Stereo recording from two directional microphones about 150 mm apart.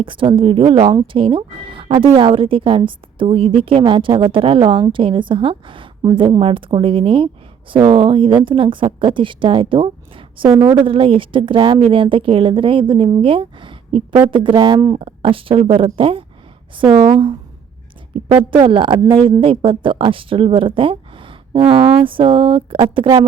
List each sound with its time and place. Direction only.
0.0 s speech: 35° right (ahead or behind)
18.7 s speech: 35° right (ahead or behind)